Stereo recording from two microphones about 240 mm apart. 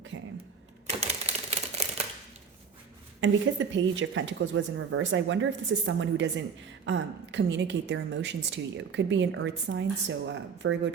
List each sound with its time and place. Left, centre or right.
0.1 s a sound: right
0.9 s typewriter: right
3.2 s a woman's voice: right